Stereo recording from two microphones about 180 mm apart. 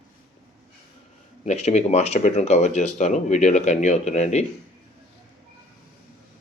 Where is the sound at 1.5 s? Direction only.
40° left (ahead or behind).